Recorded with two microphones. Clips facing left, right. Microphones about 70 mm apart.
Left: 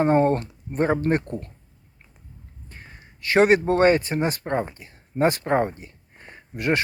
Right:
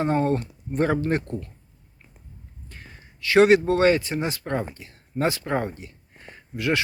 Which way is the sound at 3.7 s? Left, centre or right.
Left.